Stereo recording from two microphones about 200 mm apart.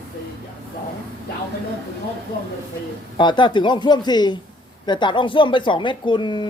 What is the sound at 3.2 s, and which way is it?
Speech, 25° left (ahead or behind).